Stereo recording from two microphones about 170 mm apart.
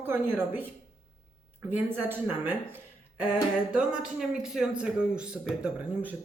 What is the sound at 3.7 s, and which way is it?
Speech, 5° right (ahead or behind).